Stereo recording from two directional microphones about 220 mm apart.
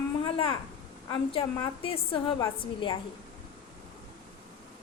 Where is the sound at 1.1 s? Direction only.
20° left (ahead or behind).